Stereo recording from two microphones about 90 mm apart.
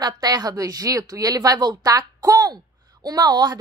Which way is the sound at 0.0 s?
50° right (ahead or behind).